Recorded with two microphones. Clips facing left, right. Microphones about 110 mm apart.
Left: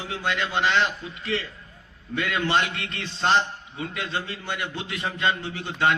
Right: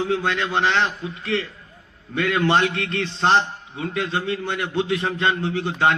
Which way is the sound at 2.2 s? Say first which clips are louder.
Right 6 dB; 50° right (ahead or behind).